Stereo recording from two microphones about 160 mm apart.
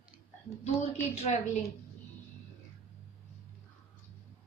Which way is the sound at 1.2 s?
40° left (ahead or behind).